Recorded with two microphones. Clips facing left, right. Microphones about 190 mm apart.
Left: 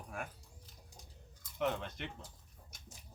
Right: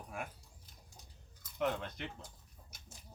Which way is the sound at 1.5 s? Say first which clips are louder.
Even; centre (ahead or behind).